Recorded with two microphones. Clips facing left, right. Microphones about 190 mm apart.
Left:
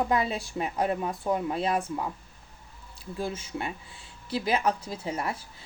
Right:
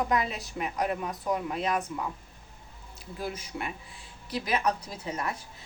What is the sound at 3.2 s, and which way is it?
A woman's voice, 25° left (ahead or behind).